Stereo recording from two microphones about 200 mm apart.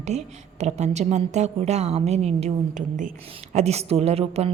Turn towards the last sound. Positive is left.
turn(degrees=-30)  # may be behind; listen again after turning